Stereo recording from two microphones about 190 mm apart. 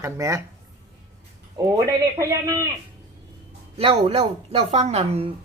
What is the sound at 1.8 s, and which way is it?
Speech, 15° right (ahead or behind).